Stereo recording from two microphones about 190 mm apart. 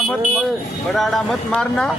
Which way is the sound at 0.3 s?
Centre (ahead or behind).